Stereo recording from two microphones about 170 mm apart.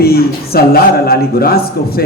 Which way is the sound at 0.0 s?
65° left (ahead or behind).